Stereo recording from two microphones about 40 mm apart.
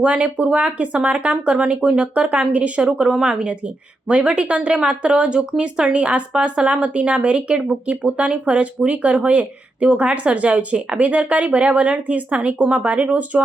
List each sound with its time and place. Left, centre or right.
0.0 s a woman's voice: right